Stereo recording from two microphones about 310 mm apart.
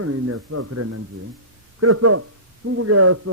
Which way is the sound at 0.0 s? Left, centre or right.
Right.